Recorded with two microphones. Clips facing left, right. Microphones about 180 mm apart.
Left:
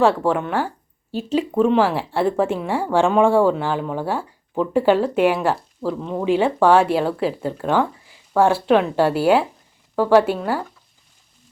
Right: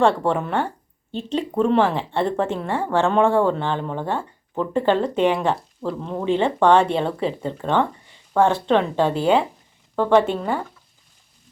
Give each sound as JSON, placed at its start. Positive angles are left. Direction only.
{"t": 0.0, "sound": "speech", "side_deg": 5}